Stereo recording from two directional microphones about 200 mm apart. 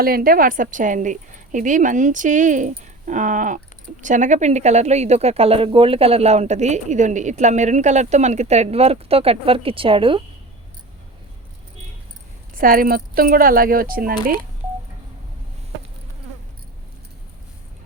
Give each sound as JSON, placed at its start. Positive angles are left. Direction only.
{"t": 0.0, "sound": "speech", "side_deg": -45}
{"t": 12.5, "sound": "speech", "side_deg": -45}